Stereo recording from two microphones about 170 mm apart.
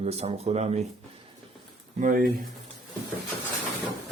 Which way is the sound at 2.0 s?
55° right (ahead or behind).